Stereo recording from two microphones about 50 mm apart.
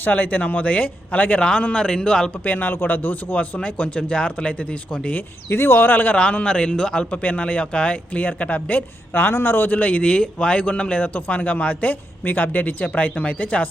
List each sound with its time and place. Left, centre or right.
0.0 s speech: left; by 2.3 s centre
2.4 s speech: left
5.1 s speech: left
6.1 s speech: left
7.1 s speech: left
9.1 s speech: left
10.0 s speech: left